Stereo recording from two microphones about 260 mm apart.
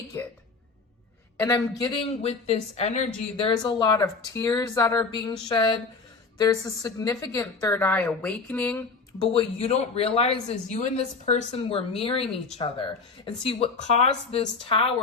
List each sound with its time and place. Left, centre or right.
1.4 s speech: centre
9.2 s speech: left
12.2 s speech: centre
12.5 s speech: centre